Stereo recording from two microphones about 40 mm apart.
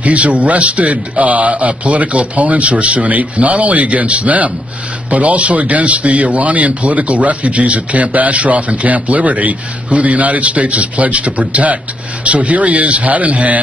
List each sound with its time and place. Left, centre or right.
0.0 s speech: right